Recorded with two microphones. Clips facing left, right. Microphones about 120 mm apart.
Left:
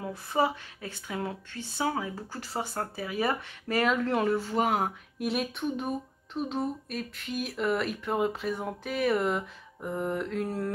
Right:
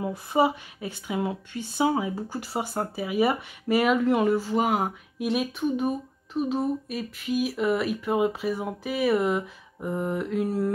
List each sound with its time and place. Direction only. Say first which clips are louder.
0.0 s speech: right 5 dB; 15° right (ahead or behind)